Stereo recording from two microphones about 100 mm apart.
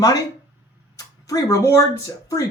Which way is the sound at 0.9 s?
35° left (ahead or behind).